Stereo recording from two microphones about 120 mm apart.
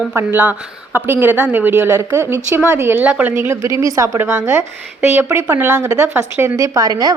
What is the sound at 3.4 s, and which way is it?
A woman's voice, 25° right (ahead or behind).